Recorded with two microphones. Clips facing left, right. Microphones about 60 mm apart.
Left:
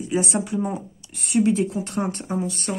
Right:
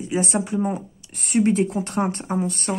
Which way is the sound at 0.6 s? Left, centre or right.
Centre.